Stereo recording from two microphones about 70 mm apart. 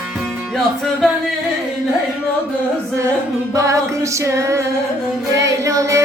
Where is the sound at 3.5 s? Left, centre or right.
Right.